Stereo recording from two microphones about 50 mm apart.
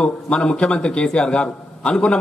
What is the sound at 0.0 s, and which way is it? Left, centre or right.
A man's voice, centre.